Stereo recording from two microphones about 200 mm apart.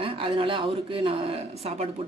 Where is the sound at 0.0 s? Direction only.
25° right (ahead or behind).